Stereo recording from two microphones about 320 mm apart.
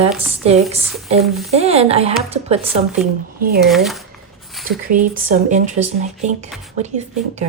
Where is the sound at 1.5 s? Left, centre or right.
Centre.